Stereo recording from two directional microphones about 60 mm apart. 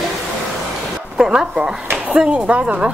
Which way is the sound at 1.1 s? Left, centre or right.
Centre.